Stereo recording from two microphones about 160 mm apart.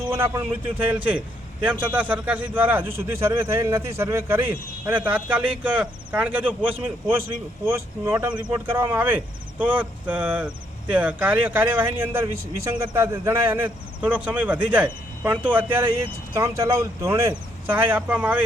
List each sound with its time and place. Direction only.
0.1 s speech: 15° right (ahead or behind)
1.7 s a man's voice: 30° right (ahead or behind)
2.0 s speech: 10° right (ahead or behind)